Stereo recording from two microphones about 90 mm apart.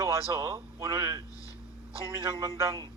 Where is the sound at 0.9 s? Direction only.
50° right (ahead or behind).